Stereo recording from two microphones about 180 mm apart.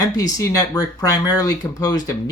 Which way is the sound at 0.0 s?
20° left (ahead or behind).